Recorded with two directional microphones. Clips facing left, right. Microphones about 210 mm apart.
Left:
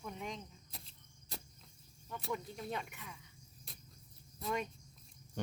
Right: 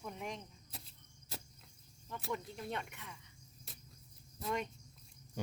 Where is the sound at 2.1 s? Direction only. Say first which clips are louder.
Even; centre (ahead or behind).